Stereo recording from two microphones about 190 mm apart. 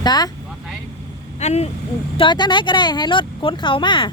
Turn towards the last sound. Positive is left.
turn(degrees=25)  # may be behind; listen again after turning